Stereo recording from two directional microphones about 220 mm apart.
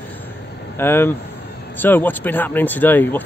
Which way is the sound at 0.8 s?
10° left (ahead or behind).